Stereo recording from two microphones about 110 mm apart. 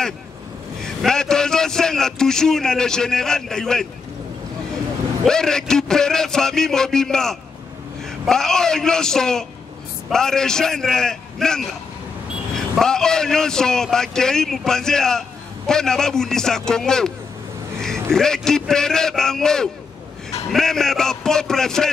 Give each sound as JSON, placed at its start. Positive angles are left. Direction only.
{"t": 1.0, "sound": "a man's voice", "side_deg": 5}
{"t": 5.2, "sound": "a man's voice", "side_deg": 5}